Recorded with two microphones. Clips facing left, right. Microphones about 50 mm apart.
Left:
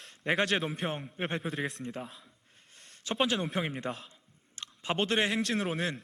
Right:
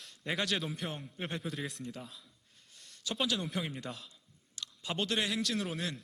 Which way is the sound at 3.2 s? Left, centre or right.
Left.